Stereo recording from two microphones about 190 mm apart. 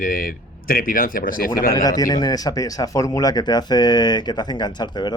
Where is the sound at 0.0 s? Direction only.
50° left (ahead or behind).